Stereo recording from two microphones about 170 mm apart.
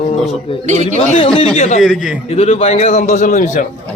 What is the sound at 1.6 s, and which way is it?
Speech, 45° left (ahead or behind).